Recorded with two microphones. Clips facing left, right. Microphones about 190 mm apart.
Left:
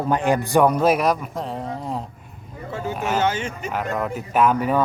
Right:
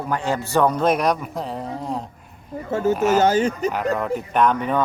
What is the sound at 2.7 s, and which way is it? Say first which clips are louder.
Speech: right 8 dB; 45° right (ahead or behind).